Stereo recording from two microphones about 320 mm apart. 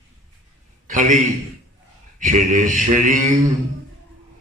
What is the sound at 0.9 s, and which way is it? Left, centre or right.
Speech, right.